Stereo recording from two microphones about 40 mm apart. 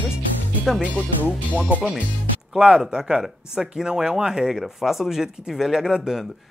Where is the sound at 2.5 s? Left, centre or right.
Centre.